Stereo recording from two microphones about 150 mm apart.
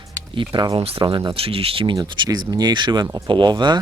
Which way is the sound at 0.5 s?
35° right (ahead or behind).